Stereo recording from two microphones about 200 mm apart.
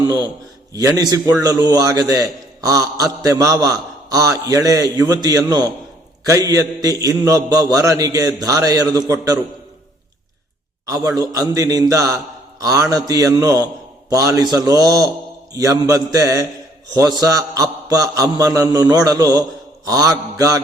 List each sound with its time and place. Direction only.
0.8 s a man's voice: 15° right (ahead or behind)
10.8 s a man's voice: 15° right (ahead or behind)